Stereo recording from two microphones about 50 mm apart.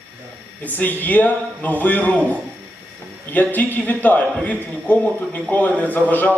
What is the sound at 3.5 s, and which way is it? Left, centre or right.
A man's voice, left.